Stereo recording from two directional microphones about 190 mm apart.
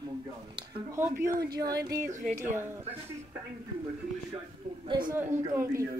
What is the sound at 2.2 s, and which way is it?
Speech, 40° right (ahead or behind).